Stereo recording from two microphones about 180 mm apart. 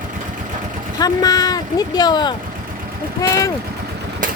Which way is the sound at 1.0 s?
20° left (ahead or behind).